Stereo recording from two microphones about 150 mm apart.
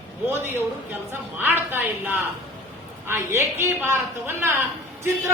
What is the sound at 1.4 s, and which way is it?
A woman's voice, 15° right (ahead or behind).